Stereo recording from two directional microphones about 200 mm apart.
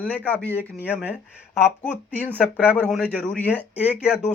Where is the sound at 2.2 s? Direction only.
5° right (ahead or behind).